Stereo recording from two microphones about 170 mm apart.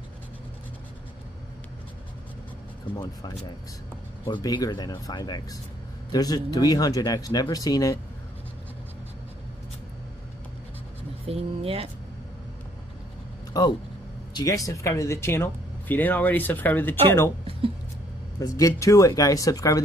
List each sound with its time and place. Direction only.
3.0 s speech: 20° left (ahead or behind)
11.2 s speech: 35° right (ahead or behind)
13.5 s a sound: 20° left (ahead or behind)
14.3 s speech: 20° left (ahead or behind)
18.4 s speech: 20° left (ahead or behind)